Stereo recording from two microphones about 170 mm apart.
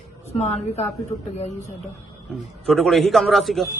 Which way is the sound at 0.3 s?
40° left (ahead or behind).